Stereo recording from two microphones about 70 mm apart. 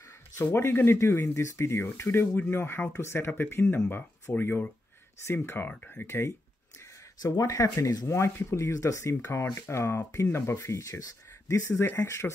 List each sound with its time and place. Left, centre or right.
0.4 s speech: left
6.0 s speech: left
7.3 s speech: left